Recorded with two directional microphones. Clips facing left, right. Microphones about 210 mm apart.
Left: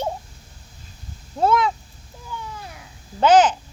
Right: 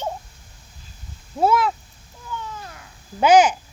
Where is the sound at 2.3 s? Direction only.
10° left (ahead or behind).